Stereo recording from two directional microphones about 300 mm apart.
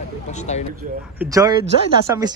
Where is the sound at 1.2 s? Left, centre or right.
Centre.